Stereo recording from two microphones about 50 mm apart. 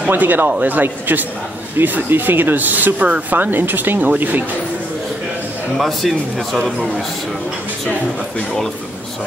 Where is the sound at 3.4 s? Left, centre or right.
Right.